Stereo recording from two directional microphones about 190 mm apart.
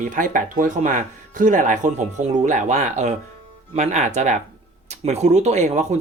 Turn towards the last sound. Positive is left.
turn(degrees=-35)  # may be behind; listen again after turning